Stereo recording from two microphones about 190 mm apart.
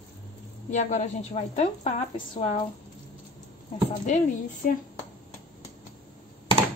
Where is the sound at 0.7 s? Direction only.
40° left (ahead or behind).